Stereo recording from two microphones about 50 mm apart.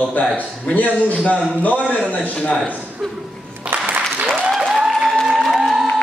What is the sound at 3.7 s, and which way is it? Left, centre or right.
Applause, right.